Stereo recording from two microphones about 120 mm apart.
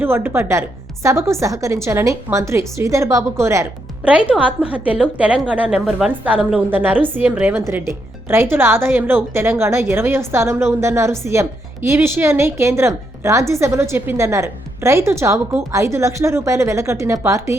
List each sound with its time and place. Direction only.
0.0 s speech: 20° right (ahead or behind)
4.3 s a woman's voice: 10° right (ahead or behind)